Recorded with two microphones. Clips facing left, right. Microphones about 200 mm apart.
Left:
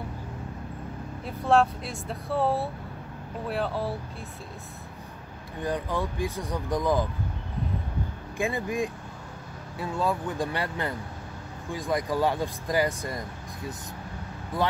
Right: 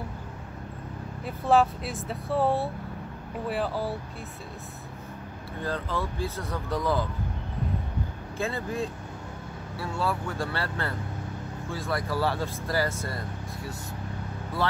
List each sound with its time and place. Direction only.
1.2 s speech: centre (ahead or behind)
5.6 s speech: 15° left (ahead or behind)
8.4 s speech: 15° left (ahead or behind)
14.6 s speech: 15° left (ahead or behind)